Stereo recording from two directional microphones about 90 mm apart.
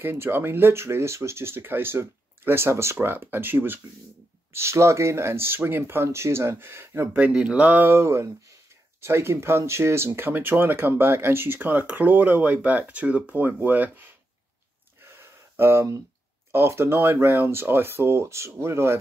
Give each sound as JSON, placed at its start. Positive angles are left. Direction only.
{"t": 0.0, "sound": "speech", "side_deg": -25}
{"t": 7.2, "sound": "speech", "side_deg": -15}
{"t": 15.0, "sound": "a sound", "side_deg": -30}
{"t": 16.5, "sound": "speech", "side_deg": -30}